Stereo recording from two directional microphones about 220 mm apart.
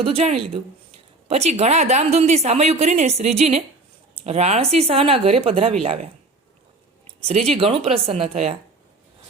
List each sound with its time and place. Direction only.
0.1 s a woman's voice: 30° right (ahead or behind)
7.5 s a woman's voice: 25° right (ahead or behind)